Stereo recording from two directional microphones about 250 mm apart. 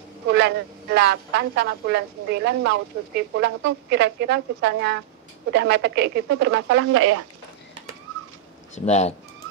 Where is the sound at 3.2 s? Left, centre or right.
Right.